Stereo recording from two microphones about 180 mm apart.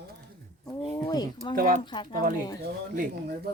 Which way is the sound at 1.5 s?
50° right (ahead or behind).